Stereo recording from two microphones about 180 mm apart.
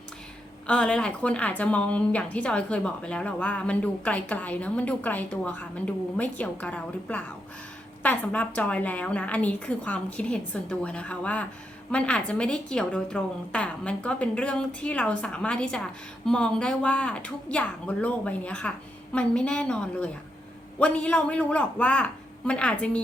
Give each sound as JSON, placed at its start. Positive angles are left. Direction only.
{"t": 0.7, "sound": "a woman's voice", "side_deg": 5}